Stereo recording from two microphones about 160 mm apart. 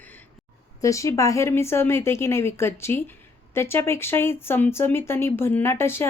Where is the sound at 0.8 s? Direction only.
20° left (ahead or behind).